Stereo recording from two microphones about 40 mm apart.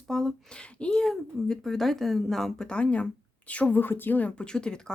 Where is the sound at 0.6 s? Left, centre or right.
Left.